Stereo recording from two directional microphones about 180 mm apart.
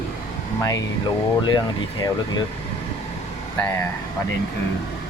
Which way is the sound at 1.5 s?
25° left (ahead or behind).